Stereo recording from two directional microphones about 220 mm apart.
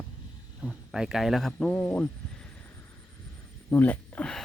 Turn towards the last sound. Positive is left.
turn(degrees=5)  # may be behind; listen again after turning